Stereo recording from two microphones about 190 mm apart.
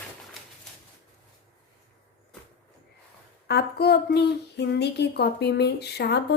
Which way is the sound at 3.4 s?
55° left (ahead or behind).